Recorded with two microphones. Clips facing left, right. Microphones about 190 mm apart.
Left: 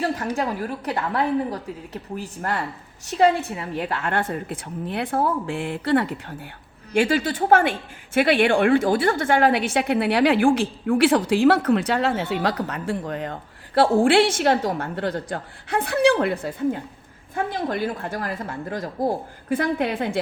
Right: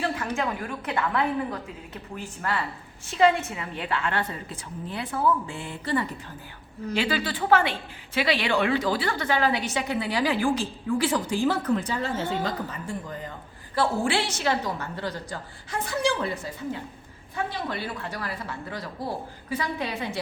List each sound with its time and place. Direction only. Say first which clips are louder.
0.3 s a woman's voice: left 4 dB; 35° left (ahead or behind); by 6.1 s 65° left (ahead or behind)
6.9 s a woman's voice: left 7 dB; 50° left (ahead or behind)